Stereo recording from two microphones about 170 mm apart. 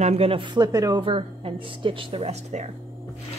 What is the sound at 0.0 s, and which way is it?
A woman's voice, 35° right (ahead or behind).